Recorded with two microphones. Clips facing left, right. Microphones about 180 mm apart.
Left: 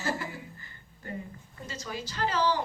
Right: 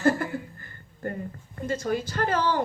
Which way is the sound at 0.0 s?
55° right (ahead or behind).